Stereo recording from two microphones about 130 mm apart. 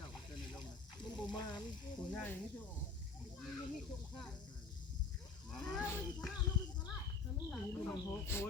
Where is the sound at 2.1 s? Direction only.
15° left (ahead or behind).